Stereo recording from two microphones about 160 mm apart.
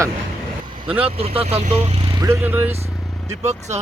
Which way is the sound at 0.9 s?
35° right (ahead or behind).